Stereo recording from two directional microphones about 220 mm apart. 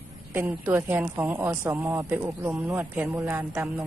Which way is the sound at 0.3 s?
10° right (ahead or behind).